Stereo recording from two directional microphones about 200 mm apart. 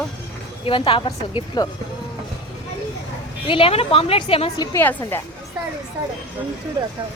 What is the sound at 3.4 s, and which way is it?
A woman's voice, 25° left (ahead or behind).